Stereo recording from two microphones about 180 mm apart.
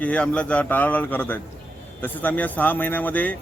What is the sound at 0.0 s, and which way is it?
A man's voice, 5° left (ahead or behind).